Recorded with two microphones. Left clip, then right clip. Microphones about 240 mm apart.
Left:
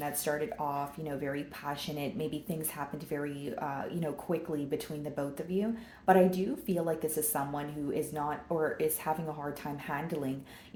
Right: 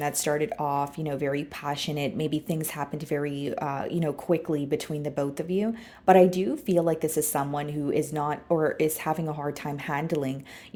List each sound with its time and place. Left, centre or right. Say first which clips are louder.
0.0 s speech: right 7 dB; right